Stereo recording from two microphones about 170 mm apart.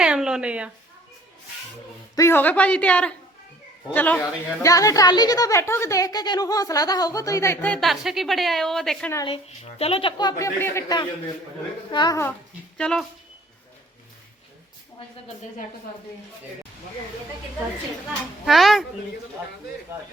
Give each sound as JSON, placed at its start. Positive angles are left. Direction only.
{"t": 0.0, "sound": "speech", "side_deg": -5}
{"t": 2.1, "sound": "speech", "side_deg": 15}
{"t": 4.6, "sound": "a woman's voice", "side_deg": 20}
{"t": 9.2, "sound": "a woman's voice", "side_deg": 35}
{"t": 12.7, "sound": "speech", "side_deg": 5}
{"t": 18.4, "sound": "speech", "side_deg": 0}